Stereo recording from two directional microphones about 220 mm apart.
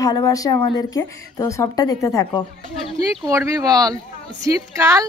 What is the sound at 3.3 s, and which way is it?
A woman's voice, 15° right (ahead or behind).